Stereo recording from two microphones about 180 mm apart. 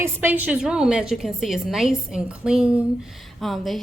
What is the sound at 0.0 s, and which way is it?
A woman's voice, 10° right (ahead or behind).